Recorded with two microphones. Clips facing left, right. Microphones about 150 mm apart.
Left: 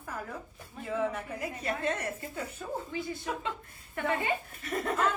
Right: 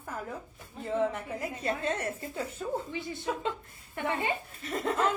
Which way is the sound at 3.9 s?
20° right (ahead or behind).